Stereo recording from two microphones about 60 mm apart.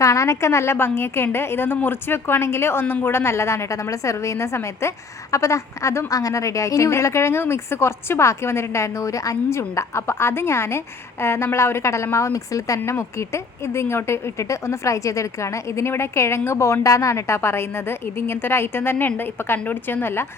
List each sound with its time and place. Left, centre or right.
0.0 s a woman's voice: left
6.1 s a woman's voice: left